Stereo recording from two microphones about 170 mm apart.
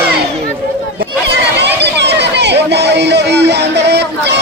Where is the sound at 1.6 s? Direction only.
90° right.